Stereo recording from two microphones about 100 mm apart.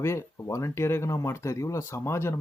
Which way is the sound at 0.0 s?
30° left (ahead or behind).